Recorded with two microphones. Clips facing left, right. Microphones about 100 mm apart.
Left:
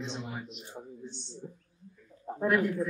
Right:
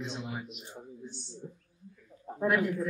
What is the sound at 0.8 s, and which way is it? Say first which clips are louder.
Speech: left 4 dB; 25° left (ahead or behind).